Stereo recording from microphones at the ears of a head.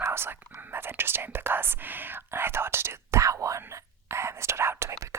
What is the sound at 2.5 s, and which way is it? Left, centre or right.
Whispering, right.